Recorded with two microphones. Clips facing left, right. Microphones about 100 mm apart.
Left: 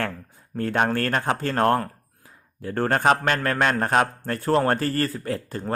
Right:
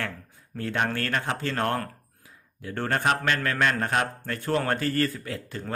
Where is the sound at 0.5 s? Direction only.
40° left (ahead or behind).